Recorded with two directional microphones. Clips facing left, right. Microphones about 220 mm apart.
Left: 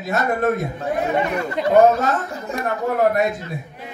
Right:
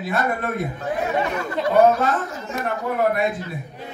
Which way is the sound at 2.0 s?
35° left (ahead or behind).